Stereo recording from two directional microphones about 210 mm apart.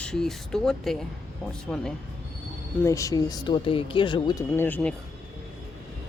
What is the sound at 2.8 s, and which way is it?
Speech, 15° left (ahead or behind).